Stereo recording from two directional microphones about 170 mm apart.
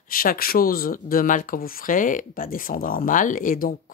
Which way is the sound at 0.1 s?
60° left (ahead or behind).